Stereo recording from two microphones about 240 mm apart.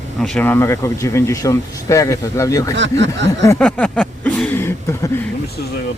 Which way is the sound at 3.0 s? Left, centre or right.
Right.